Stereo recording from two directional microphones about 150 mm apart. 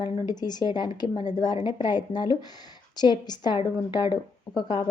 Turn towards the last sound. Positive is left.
turn(degrees=30)  # may be behind; listen again after turning